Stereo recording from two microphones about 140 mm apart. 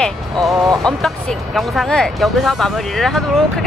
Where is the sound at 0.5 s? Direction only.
25° right (ahead or behind).